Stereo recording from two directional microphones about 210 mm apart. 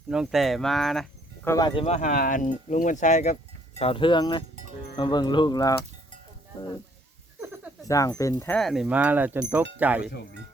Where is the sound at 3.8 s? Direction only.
25° left (ahead or behind).